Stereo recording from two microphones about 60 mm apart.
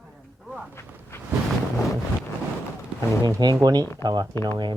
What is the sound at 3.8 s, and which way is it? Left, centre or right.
Speech, left.